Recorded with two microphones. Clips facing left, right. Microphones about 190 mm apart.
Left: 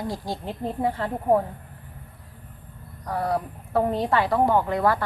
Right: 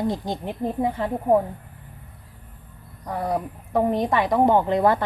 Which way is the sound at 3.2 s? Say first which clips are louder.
Even; 15° right (ahead or behind).